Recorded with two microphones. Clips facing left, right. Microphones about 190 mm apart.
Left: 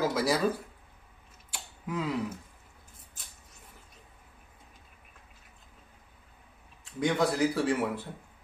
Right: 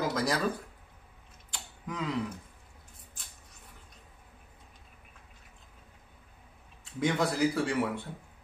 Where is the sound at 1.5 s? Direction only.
5° left (ahead or behind).